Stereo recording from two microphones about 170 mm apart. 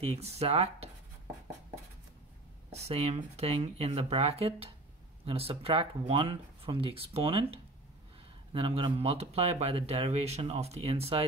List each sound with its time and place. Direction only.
0.0 s speech: 35° right (ahead or behind)
2.7 s speech: 40° right (ahead or behind)